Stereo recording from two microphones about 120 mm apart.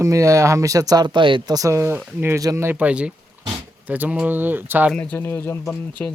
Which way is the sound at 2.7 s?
10° right (ahead or behind).